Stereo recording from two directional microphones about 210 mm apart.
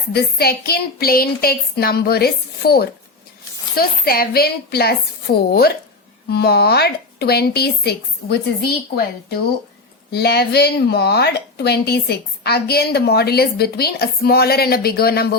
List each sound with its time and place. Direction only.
0.1 s speech: 50° left (ahead or behind)